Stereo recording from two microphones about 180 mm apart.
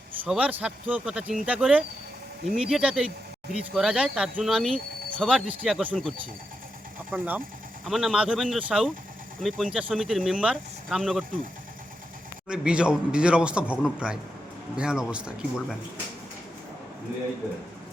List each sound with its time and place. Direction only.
0.3 s a man's voice: 5° right (ahead or behind)
7.1 s a man's voice: 10° right (ahead or behind)
12.5 s a man's voice: 5° right (ahead or behind)